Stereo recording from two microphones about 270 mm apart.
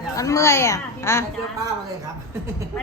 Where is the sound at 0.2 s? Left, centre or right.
Centre.